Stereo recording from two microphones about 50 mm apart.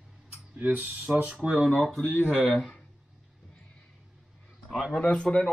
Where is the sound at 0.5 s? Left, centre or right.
Right.